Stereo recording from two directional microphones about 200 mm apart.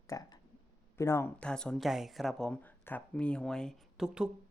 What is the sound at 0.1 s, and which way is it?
Speech, 20° left (ahead or behind).